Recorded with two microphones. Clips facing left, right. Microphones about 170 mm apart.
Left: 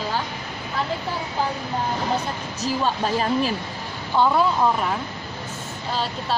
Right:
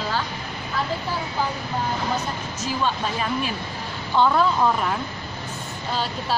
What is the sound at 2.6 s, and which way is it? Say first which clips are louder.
Speech: left 2 dB; 40° left (ahead or behind).